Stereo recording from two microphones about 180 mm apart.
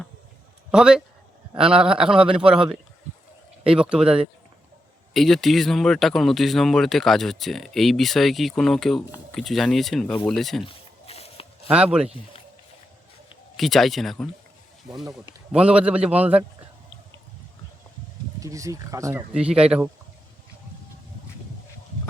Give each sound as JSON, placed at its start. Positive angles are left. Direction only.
{"t": 0.7, "sound": "speech", "side_deg": -5}
{"t": 10.7, "sound": "a sound", "side_deg": 35}
{"t": 11.7, "sound": "speech", "side_deg": -5}
{"t": 13.6, "sound": "speech", "side_deg": 0}
{"t": 15.5, "sound": "a man's voice", "side_deg": -5}
{"t": 18.3, "sound": "a man's voice", "side_deg": -20}
{"t": 19.3, "sound": "speech", "side_deg": -5}